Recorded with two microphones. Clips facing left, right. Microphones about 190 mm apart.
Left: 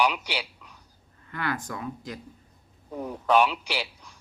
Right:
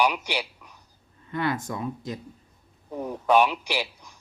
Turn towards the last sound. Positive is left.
turn(degrees=-10)  # may be behind; listen again after turning